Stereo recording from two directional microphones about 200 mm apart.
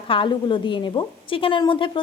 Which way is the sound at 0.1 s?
25° left (ahead or behind).